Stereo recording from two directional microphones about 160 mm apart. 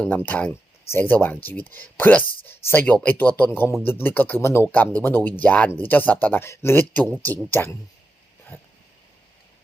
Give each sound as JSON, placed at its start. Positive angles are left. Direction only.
{"t": 0.0, "sound": "speech", "side_deg": 10}